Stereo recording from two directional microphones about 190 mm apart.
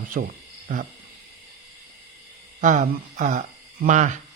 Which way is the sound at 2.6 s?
40° right (ahead or behind).